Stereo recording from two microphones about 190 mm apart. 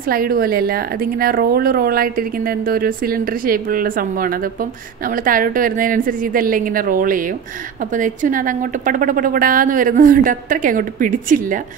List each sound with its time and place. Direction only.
0.0 s speech: 50° right (ahead or behind)